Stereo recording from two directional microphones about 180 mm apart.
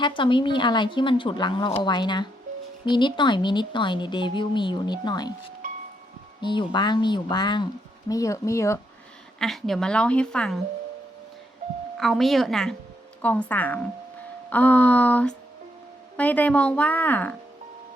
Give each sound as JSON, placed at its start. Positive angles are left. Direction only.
{"t": 0.0, "sound": "a woman's voice", "side_deg": 25}
{"t": 6.4, "sound": "a woman's voice", "side_deg": 25}
{"t": 9.4, "sound": "a woman's voice", "side_deg": 0}
{"t": 11.9, "sound": "a woman's voice", "side_deg": 0}